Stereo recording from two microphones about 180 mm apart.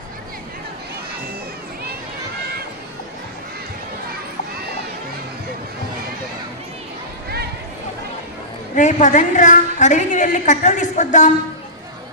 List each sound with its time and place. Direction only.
8.7 s a woman's voice: 45° left (ahead or behind)